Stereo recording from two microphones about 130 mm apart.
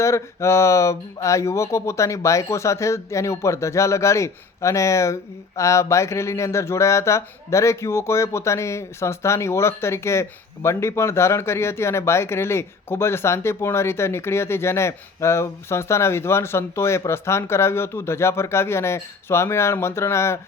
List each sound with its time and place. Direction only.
0.0 s speech: 20° left (ahead or behind)